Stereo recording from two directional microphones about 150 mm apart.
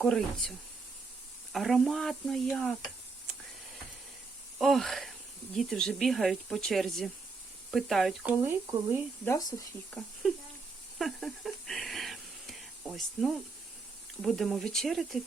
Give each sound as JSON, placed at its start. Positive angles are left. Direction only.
{"t": 0.0, "sound": "speech", "side_deg": 0}
{"t": 1.5, "sound": "speech", "side_deg": 0}
{"t": 4.5, "sound": "speech", "side_deg": 0}
{"t": 9.2, "sound": "speech", "side_deg": 20}
{"t": 10.9, "sound": "a sound", "side_deg": 0}
{"t": 14.2, "sound": "speech", "side_deg": 0}